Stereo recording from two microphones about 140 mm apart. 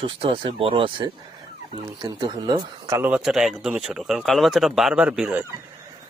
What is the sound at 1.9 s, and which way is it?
Speech, 30° right (ahead or behind).